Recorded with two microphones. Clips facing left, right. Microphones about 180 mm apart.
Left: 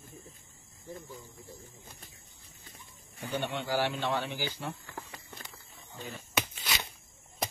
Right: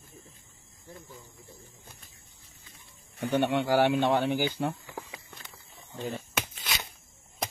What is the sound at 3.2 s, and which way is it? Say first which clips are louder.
Speech: right 8 dB; 70° right (ahead or behind).